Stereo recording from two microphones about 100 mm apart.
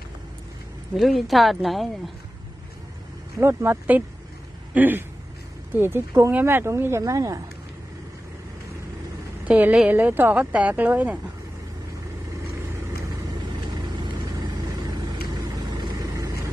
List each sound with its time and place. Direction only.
0.9 s speech: centre (ahead or behind)
3.3 s speech: 25° right (ahead or behind)
9.5 s speech: 15° right (ahead or behind)
15.7 s vehicle: 40° right (ahead or behind)